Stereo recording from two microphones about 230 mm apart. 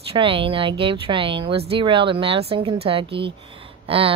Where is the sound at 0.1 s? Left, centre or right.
Right.